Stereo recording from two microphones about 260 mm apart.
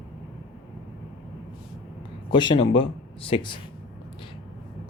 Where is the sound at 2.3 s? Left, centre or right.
Centre.